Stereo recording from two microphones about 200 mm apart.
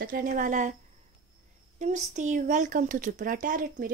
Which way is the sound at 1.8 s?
35° right (ahead or behind).